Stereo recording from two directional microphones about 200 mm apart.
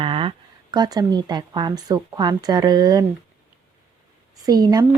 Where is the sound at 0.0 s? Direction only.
25° right (ahead or behind).